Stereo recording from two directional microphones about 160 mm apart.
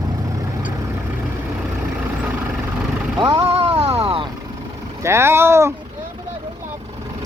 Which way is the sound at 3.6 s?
40° right (ahead or behind).